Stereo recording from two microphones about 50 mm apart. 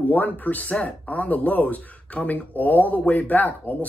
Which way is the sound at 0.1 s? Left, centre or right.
Left.